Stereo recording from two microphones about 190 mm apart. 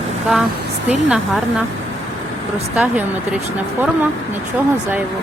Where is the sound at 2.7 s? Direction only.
10° right (ahead or behind).